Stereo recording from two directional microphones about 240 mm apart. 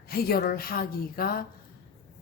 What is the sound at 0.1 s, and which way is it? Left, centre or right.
Speech, left.